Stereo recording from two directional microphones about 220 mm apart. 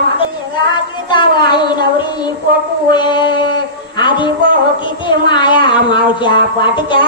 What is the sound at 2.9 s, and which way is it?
Speech, 20° left (ahead or behind).